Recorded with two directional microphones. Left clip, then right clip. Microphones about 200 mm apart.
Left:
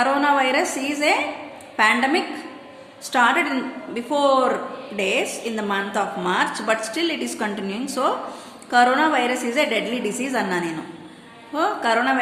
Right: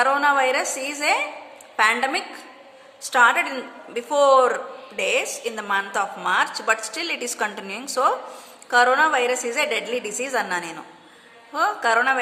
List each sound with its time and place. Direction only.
0.0 s a woman's voice: 30° right (ahead or behind)